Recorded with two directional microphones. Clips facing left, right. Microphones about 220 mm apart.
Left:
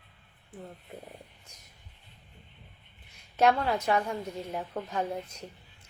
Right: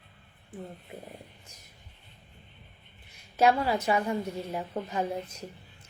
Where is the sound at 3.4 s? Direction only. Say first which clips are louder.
Right 1 dB; 5° right (ahead or behind).